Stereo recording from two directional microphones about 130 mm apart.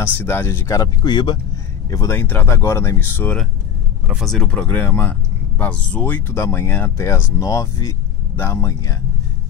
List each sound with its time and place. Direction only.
0.0 s speech: 15° left (ahead or behind)
2.1 s speech: 15° left (ahead or behind)
4.1 s speech: centre (ahead or behind); by 8.9 s 20° left (ahead or behind)